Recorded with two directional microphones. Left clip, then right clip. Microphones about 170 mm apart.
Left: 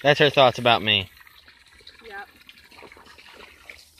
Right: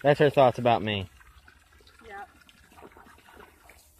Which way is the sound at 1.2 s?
55° right (ahead or behind).